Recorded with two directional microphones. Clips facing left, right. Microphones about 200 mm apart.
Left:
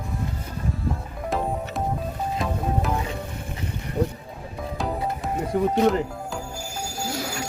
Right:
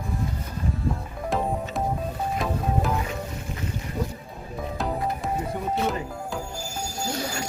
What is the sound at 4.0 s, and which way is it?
Music, 35° left (ahead or behind).